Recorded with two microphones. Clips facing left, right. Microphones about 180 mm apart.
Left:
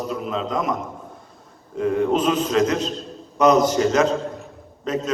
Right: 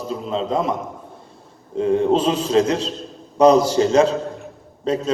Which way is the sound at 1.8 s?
25° right (ahead or behind).